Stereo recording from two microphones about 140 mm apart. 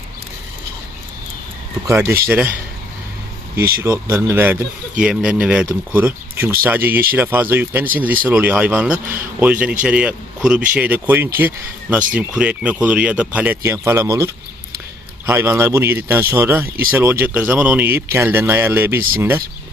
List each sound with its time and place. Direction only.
1.9 s speech: 20° right (ahead or behind)
4.1 s speech: 15° right (ahead or behind)
15.3 s speech: 15° right (ahead or behind)
16.6 s speech: 90° right
16.9 s speech: 15° right (ahead or behind)